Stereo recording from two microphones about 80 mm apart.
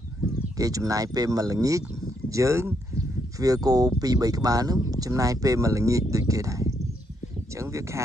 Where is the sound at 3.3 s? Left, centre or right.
Right.